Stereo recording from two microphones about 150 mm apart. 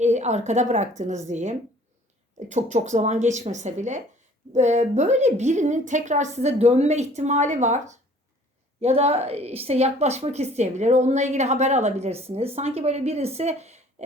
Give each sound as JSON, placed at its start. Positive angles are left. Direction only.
{"t": 0.0, "sound": "a woman's voice", "side_deg": -50}
{"t": 8.8, "sound": "a woman's voice", "side_deg": -40}